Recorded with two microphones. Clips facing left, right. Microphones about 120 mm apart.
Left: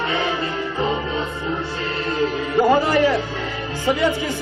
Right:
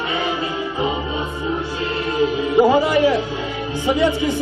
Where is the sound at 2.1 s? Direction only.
15° right (ahead or behind).